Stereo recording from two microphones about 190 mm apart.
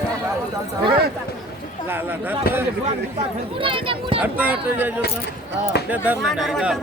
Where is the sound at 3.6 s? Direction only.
25° right (ahead or behind).